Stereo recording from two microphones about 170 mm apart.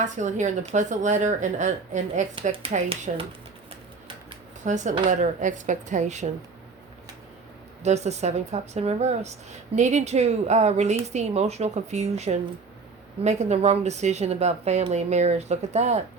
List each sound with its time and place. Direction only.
0.0 s speech: 45° right (ahead or behind)
2.5 s speech: 35° right (ahead or behind)
4.6 s speech: 45° right (ahead or behind)
7.8 s speech: 40° right (ahead or behind)